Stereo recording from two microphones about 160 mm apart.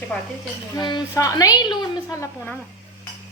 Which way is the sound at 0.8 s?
25° left (ahead or behind).